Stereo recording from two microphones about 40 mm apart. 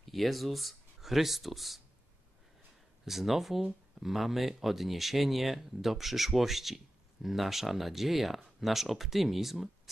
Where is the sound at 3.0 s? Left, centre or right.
Centre.